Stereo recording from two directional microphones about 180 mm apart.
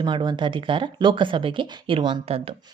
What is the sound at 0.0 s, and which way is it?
A woman's voice, 25° right (ahead or behind).